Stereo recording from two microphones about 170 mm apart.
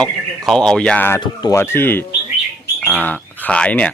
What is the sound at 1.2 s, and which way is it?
Speech, 20° left (ahead or behind).